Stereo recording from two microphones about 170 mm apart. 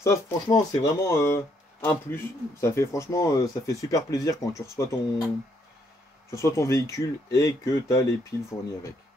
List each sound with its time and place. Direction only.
0.0 s speech: 20° left (ahead or behind)
6.3 s speech: 15° left (ahead or behind)